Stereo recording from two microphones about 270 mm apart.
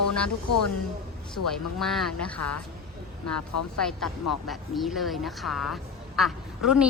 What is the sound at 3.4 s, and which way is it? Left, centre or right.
Speech, left.